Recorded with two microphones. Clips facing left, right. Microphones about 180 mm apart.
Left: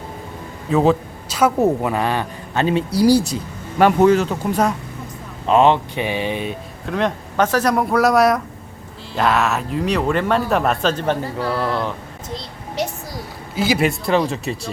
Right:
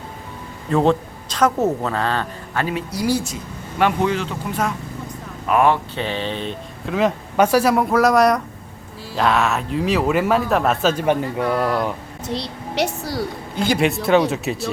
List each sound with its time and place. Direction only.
0.7 s a woman's voice: 5° left (ahead or behind); by 4.7 s 40° left (ahead or behind)
5.5 s a woman's voice: 25° left (ahead or behind)
6.8 s speech: 5° right (ahead or behind)
11.3 s speech: 30° left (ahead or behind)
11.7 s speech: 10° right (ahead or behind)
12.3 s a woman's voice: 75° right (ahead or behind)
13.6 s speech: 5° left (ahead or behind)